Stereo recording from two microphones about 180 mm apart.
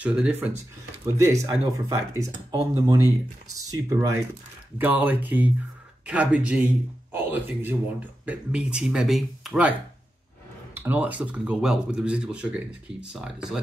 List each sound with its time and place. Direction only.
0.0 s speech: 5° right (ahead or behind)